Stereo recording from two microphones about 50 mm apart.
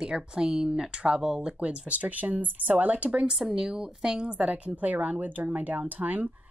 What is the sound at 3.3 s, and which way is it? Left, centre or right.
A woman's voice, centre.